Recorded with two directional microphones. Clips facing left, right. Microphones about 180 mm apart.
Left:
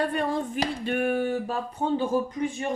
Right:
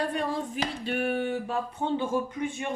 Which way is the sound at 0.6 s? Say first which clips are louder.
Left 3 dB; 50° left (ahead or behind).